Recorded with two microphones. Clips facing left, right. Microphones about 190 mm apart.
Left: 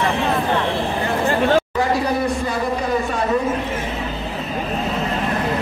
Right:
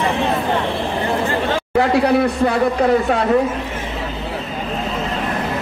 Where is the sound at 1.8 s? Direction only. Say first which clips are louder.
Right 5 dB; 65° right (ahead or behind).